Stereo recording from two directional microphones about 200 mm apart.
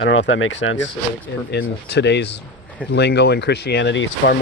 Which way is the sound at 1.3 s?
60° left (ahead or behind).